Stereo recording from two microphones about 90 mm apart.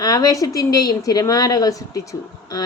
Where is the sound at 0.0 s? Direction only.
45° left (ahead or behind).